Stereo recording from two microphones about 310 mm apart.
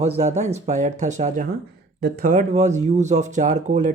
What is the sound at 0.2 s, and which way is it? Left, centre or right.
Speech, right.